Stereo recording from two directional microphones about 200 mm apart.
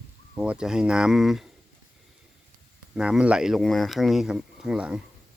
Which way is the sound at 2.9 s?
5° right (ahead or behind).